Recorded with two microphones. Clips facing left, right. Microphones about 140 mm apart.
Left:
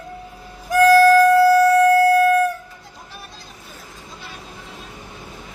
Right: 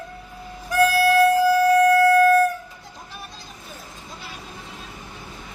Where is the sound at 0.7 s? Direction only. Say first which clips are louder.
Left 6 dB; 40° left (ahead or behind).